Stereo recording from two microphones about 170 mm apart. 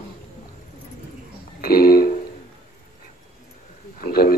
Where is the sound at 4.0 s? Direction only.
60° left (ahead or behind).